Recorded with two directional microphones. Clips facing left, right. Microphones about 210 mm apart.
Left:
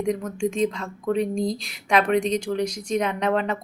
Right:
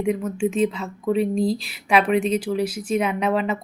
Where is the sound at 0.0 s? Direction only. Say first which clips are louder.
Right 2 dB; 5° right (ahead or behind).